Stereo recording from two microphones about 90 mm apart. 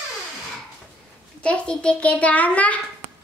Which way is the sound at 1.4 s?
10° left (ahead or behind).